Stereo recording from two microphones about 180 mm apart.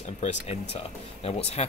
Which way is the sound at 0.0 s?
40° left (ahead or behind).